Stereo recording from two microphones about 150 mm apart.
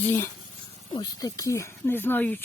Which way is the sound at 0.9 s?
25° left (ahead or behind).